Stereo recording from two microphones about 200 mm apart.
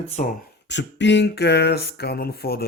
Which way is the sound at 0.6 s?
60° left (ahead or behind).